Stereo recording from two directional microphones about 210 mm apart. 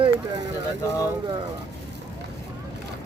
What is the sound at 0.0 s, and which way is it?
Vehicle, 15° right (ahead or behind).